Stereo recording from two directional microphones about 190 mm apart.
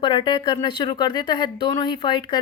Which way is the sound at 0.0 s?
25° left (ahead or behind).